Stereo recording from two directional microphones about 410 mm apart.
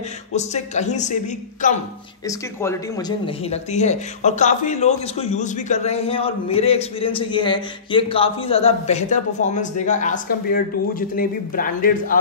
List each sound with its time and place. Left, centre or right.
0.3 s speech: centre